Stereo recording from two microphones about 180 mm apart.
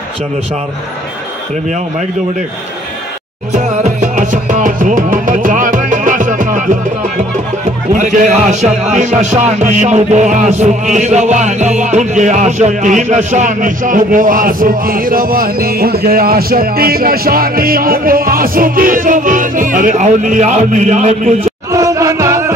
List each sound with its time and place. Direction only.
3.5 s music: 45° right (ahead or behind)
7.9 s speech: 45° right (ahead or behind)
10.6 s music: 40° right (ahead or behind)
21.7 s music: 20° right (ahead or behind)